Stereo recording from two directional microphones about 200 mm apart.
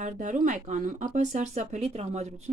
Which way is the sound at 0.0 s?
40° right (ahead or behind).